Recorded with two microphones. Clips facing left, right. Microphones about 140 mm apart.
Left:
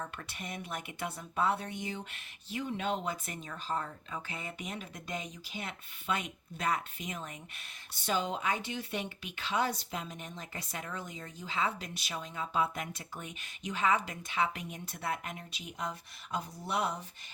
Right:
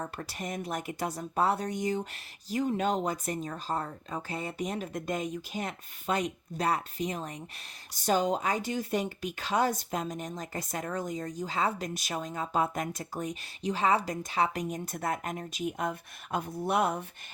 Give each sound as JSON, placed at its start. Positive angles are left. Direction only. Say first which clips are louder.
{"t": 0.0, "sound": "speech", "louder": "right 5 dB", "side_deg": -35}